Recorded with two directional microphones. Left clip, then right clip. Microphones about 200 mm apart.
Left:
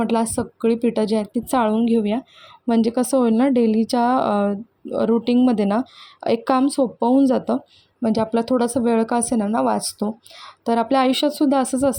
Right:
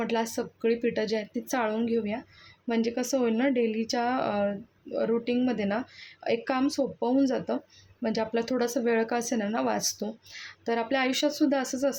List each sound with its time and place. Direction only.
0.0 s speech: 25° left (ahead or behind)